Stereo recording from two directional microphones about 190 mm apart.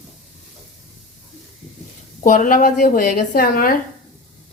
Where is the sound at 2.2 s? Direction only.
45° left (ahead or behind).